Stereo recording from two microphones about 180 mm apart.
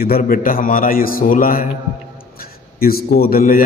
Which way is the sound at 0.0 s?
55° left (ahead or behind).